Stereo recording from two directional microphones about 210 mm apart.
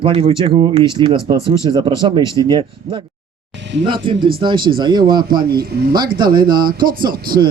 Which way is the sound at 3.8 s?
25° right (ahead or behind).